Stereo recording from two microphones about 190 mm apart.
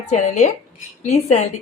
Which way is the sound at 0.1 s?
40° left (ahead or behind).